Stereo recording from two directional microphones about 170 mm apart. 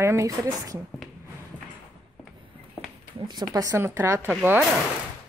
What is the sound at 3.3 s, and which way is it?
Speech, 20° right (ahead or behind).